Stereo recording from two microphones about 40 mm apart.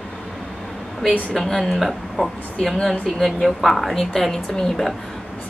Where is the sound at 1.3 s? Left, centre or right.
Centre.